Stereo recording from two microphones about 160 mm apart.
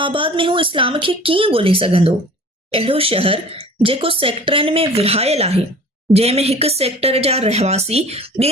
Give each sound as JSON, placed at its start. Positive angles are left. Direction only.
{"t": 0.0, "sound": "speech", "side_deg": -30}